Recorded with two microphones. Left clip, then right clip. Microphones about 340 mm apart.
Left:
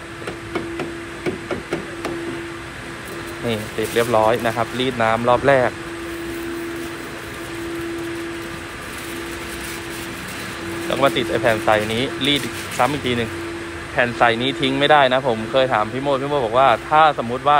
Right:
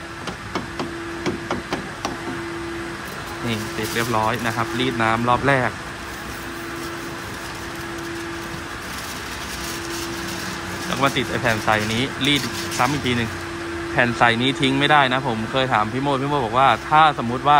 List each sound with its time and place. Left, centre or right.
4.0 s speech: centre
10.9 s a man's voice: centre